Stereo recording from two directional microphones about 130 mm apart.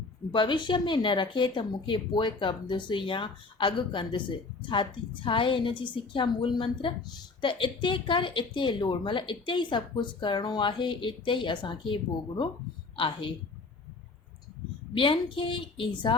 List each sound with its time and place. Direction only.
0.3 s speech: 40° left (ahead or behind)
13.0 s speech: 40° left (ahead or behind)
14.9 s speech: 40° left (ahead or behind)